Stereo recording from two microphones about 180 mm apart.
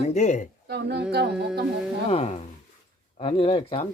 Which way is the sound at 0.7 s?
65° right (ahead or behind).